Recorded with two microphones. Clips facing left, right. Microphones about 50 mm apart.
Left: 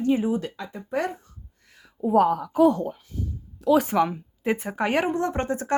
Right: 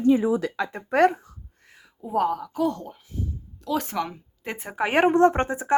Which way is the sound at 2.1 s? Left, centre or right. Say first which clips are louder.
Left 4 dB; centre.